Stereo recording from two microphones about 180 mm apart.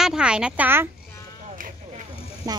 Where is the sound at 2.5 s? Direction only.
20° right (ahead or behind).